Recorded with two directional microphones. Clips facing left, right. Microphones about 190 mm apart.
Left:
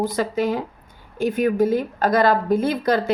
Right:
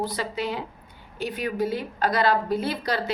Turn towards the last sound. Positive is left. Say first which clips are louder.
# left 7 dB
turn(degrees=50)  # may be behind; listen again after turning